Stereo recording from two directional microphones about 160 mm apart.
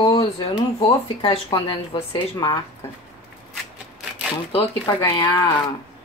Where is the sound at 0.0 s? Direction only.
30° left (ahead or behind).